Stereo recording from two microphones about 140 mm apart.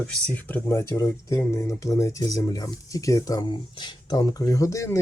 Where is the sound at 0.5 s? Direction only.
20° left (ahead or behind).